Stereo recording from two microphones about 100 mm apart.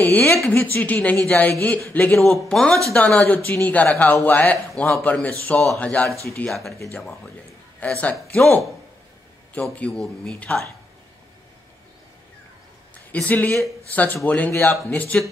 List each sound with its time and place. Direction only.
0.0 s a man's voice: 20° left (ahead or behind)
2.1 s a man's voice: 5° left (ahead or behind)
7.8 s a man's voice: 15° left (ahead or behind)
12.9 s a man's voice: 15° left (ahead or behind)